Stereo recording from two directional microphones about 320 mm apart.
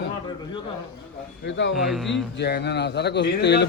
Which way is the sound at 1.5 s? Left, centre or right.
Left.